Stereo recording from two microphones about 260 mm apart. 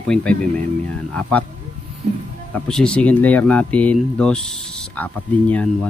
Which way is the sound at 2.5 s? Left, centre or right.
Centre.